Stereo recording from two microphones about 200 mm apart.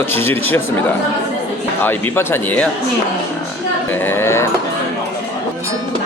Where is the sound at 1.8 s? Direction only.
10° left (ahead or behind).